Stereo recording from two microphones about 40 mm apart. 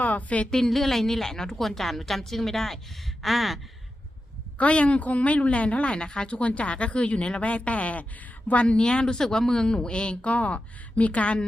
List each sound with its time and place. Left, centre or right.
0.0 s a woman's voice: left
0.5 s a woman's voice: centre
4.5 s speech: left
6.3 s speech: left
8.6 s speech: left